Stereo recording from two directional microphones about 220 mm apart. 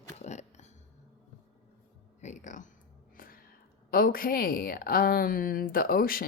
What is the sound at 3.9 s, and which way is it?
A woman's voice, 40° left (ahead or behind).